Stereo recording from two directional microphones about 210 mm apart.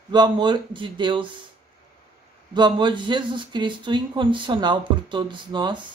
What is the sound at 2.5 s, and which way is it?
Speech, 20° right (ahead or behind).